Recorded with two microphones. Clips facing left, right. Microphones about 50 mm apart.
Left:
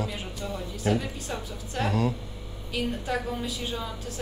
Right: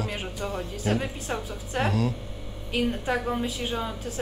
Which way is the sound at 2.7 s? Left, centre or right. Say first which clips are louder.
Right 3 dB; right.